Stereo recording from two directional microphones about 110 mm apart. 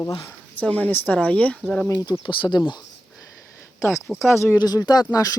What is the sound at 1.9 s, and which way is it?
Speech, 35° left (ahead or behind).